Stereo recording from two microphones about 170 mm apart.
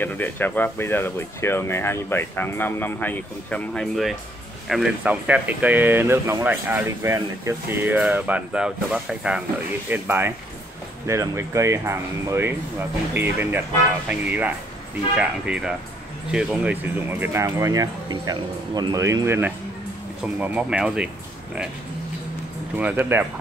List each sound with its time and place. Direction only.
0.0 s speech: 10° left (ahead or behind); by 21.1 s 5° right (ahead or behind)
22.8 s speech: 10° right (ahead or behind)